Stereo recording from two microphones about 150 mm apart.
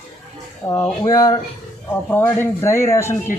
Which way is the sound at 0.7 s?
20° left (ahead or behind).